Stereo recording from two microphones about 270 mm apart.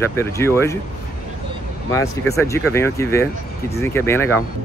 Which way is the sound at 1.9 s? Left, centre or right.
Centre.